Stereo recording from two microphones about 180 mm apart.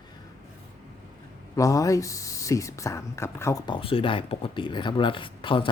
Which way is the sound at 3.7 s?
30° left (ahead or behind).